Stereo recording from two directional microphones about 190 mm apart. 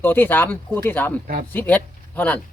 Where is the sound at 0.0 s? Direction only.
10° left (ahead or behind).